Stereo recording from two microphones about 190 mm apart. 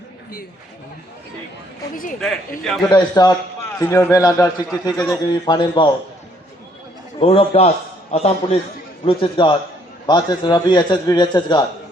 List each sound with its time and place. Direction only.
2.2 s a man's voice: centre (ahead or behind)
2.9 s a man's voice: 20° left (ahead or behind)
7.2 s a man's voice: 30° left (ahead or behind)